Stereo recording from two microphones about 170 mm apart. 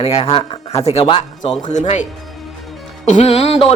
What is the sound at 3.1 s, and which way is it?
Speech, 40° left (ahead or behind).